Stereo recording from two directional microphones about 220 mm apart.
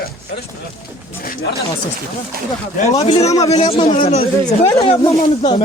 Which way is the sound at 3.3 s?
15° left (ahead or behind).